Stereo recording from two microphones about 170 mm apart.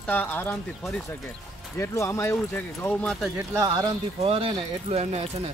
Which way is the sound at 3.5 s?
25° right (ahead or behind).